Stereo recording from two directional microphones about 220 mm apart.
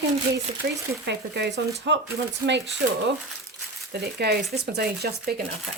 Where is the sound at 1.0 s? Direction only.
50° right (ahead or behind).